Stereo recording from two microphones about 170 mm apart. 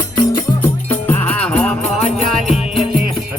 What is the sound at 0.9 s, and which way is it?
Music, 10° left (ahead or behind).